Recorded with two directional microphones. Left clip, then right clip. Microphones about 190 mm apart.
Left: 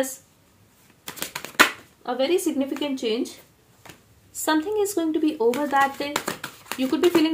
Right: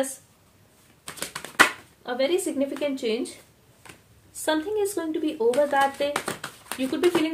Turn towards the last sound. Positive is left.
turn(degrees=20)  # may be behind; listen again after turning